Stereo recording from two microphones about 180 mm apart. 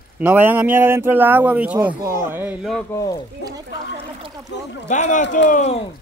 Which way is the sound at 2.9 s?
20° left (ahead or behind).